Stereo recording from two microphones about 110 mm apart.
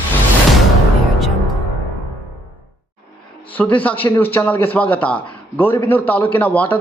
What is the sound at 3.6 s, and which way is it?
A man's voice, 15° left (ahead or behind).